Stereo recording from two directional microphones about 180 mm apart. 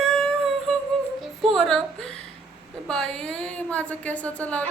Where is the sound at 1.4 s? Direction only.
Centre (ahead or behind).